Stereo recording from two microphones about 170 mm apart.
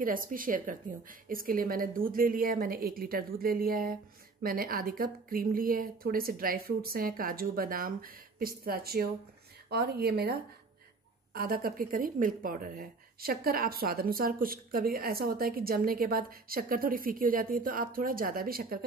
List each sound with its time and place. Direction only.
0.0 s a woman's voice: 55° right (ahead or behind)